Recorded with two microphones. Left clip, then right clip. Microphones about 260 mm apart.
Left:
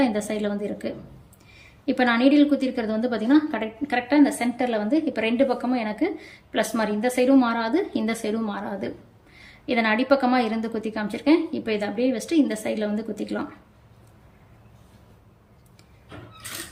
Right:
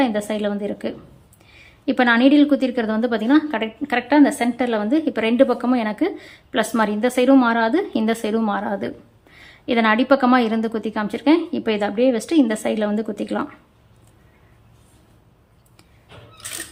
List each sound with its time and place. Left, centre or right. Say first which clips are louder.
0.0 s a woman's voice: right 3 dB; centre